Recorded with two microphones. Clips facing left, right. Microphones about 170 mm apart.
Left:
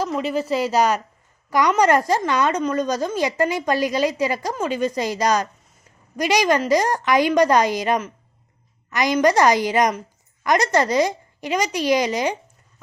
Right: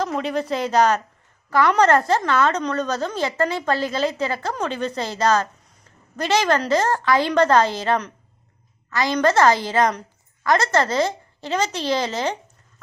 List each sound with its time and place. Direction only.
0.0 s a woman's voice: 5° left (ahead or behind)